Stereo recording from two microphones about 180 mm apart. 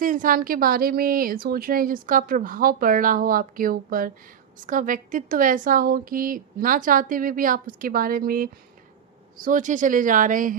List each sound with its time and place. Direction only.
0.0 s a woman's voice: 50° right (ahead or behind)